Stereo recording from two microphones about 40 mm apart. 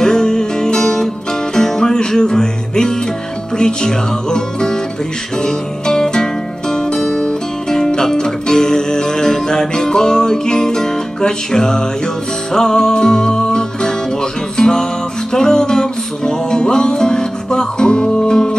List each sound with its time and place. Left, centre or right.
0.0 s music: centre